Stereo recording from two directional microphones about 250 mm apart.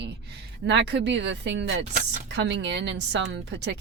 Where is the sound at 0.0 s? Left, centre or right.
Right.